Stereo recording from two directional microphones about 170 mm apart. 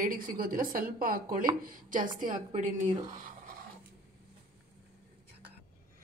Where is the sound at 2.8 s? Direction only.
30° right (ahead or behind).